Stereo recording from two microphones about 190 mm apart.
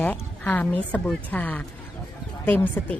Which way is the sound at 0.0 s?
10° left (ahead or behind).